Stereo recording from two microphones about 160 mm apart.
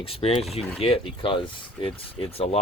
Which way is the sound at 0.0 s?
40° left (ahead or behind).